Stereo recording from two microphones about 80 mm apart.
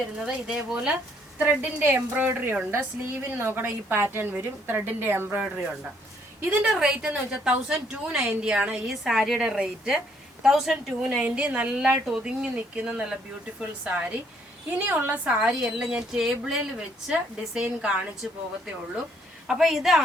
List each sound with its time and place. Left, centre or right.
0.2 s a woman's voice: centre
1.4 s a woman's voice: right
6.7 s a woman's voice: centre
8.9 s a woman's voice: centre
11.2 s a woman's voice: centre
15.4 s a woman's voice: centre